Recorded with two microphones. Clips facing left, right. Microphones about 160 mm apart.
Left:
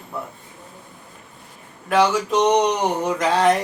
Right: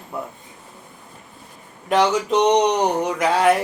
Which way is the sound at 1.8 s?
20° right (ahead or behind).